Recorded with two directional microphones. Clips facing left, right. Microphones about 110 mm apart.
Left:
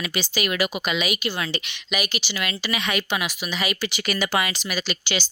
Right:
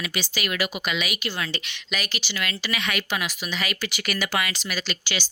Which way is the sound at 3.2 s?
15° left (ahead or behind).